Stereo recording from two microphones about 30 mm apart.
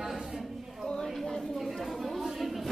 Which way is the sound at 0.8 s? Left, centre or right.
Left.